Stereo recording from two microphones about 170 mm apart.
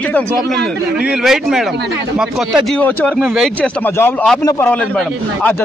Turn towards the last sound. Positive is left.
turn(degrees=10)  # may be behind; listen again after turning